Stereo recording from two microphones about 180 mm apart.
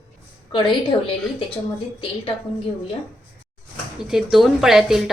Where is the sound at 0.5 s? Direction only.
25° left (ahead or behind).